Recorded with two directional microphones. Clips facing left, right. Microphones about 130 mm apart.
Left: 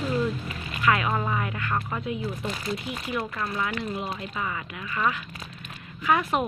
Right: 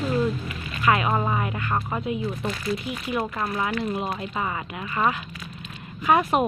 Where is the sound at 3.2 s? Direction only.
35° right (ahead or behind).